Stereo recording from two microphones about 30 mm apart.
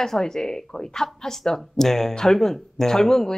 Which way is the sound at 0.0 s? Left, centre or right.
Centre.